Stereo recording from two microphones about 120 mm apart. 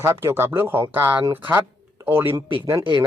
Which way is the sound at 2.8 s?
40° right (ahead or behind).